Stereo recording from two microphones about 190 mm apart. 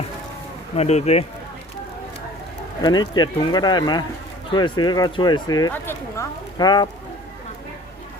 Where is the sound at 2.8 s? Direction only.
20° left (ahead or behind).